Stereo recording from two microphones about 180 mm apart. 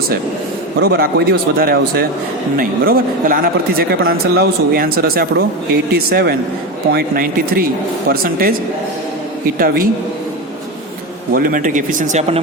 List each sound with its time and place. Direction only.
0.8 s speech: 60° right (ahead or behind)
9.6 s speech: 55° right (ahead or behind)
11.3 s speech: 50° right (ahead or behind)